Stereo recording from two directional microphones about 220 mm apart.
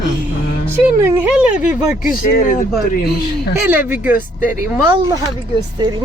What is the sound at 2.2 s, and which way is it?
Speech, 40° left (ahead or behind).